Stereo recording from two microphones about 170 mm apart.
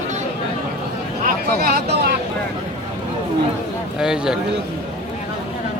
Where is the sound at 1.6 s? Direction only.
65° right (ahead or behind).